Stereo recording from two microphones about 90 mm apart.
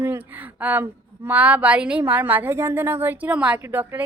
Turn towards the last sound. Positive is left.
turn(degrees=-25)  # may be behind; listen again after turning